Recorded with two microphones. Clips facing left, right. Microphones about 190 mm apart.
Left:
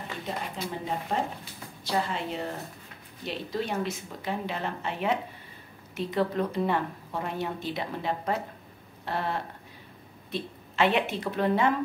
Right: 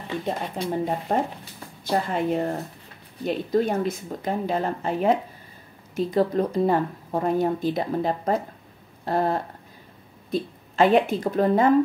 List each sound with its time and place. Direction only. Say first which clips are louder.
0.7 s a woman's voice: right 8 dB; 45° right (ahead or behind)